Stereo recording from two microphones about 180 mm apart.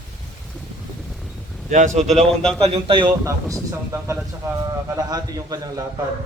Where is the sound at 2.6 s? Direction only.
30° right (ahead or behind).